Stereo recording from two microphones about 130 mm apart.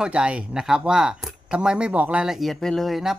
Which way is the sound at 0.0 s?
10° right (ahead or behind).